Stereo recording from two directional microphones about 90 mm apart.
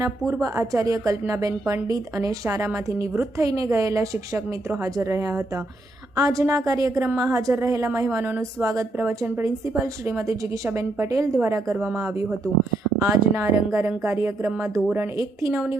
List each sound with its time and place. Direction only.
0.4 s a woman's voice: 35° right (ahead or behind)
9.0 s speech: 25° right (ahead or behind)
10.1 s a woman's voice: 35° right (ahead or behind)
13.0 s a woman's voice: 30° right (ahead or behind)
14.6 s speech: 5° right (ahead or behind)
14.9 s a woman's voice: 35° right (ahead or behind)